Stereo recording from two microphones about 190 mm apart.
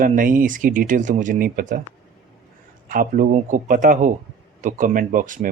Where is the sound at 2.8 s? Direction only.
45° right (ahead or behind).